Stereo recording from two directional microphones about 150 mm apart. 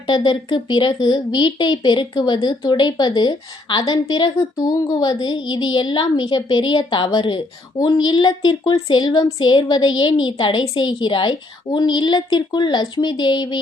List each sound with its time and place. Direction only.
0.1 s speech: 30° left (ahead or behind)